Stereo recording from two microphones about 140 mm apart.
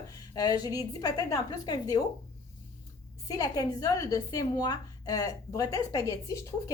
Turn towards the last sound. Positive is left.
turn(degrees=25)  # may be behind; listen again after turning